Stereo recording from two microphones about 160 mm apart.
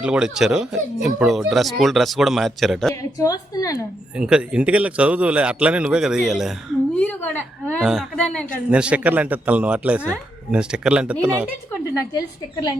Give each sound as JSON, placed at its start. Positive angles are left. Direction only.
{"t": 0.0, "sound": "speech", "side_deg": -5}
{"t": 2.9, "sound": "a woman's voice", "side_deg": 20}
{"t": 4.1, "sound": "a man's voice", "side_deg": -5}
{"t": 6.9, "sound": "a woman's voice", "side_deg": 10}
{"t": 7.8, "sound": "speech", "side_deg": 0}
{"t": 8.7, "sound": "a man's voice", "side_deg": -5}
{"t": 11.9, "sound": "a woman's voice", "side_deg": 20}